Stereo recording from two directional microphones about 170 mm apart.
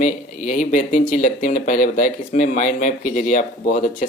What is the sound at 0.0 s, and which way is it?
Speech, 50° left (ahead or behind).